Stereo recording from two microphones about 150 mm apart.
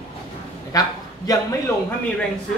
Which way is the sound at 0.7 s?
25° left (ahead or behind).